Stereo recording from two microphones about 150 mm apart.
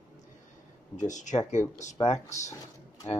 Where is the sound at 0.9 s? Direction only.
55° left (ahead or behind).